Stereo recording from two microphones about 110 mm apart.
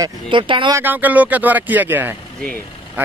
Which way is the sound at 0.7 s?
15° right (ahead or behind).